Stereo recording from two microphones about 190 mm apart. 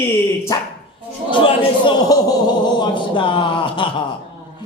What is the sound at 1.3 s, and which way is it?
A man's voice, 25° left (ahead or behind).